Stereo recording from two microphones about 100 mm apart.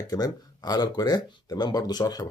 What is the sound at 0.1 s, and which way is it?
Speech, 40° left (ahead or behind).